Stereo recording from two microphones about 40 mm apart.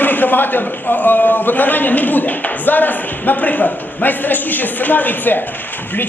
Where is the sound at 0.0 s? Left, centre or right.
Left.